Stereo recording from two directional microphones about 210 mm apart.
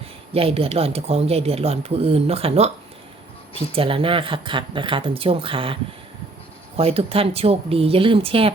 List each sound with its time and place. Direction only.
0.3 s speech: 25° right (ahead or behind)
3.8 s speech: 25° right (ahead or behind)
6.7 s speech: 30° right (ahead or behind)